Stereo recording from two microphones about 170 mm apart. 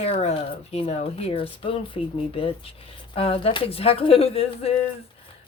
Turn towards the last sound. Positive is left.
turn(degrees=35)  # may be behind; listen again after turning